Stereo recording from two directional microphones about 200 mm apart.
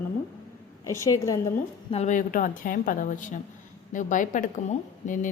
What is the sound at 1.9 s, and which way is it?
A woman's voice, 35° left (ahead or behind).